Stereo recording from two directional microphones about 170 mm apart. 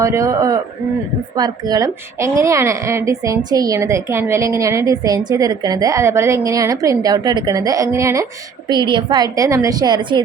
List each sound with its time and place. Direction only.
0.0 s a woman's voice: 20° right (ahead or behind)